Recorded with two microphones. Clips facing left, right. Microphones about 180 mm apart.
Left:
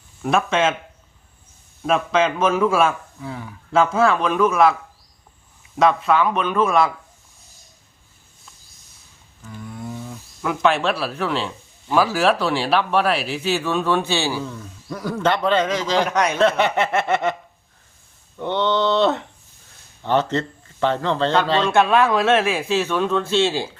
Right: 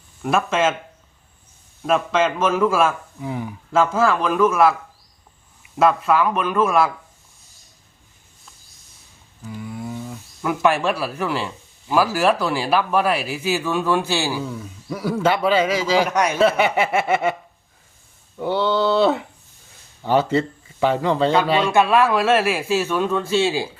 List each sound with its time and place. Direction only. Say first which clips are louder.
0.2 s speech: even; centre (ahead or behind)
1.8 s speech: even; centre (ahead or behind)
3.2 s speech: right 5 dB; 15° right (ahead or behind)
3.7 s speech: left 1 dB; centre (ahead or behind)
5.7 s speech: even; 5° right (ahead or behind)
9.4 s a sound: right 3 dB; 5° right (ahead or behind)
11.0 s speech: even; 5° right (ahead or behind)
18.3 s speech: right 1 dB; 5° right (ahead or behind)